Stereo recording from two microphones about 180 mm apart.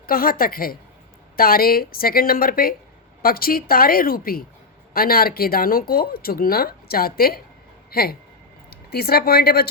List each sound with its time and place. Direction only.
0.0 s a woman's voice: 55° left (ahead or behind)